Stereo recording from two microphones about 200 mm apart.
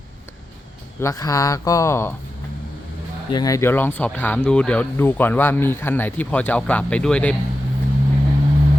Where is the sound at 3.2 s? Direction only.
20° left (ahead or behind).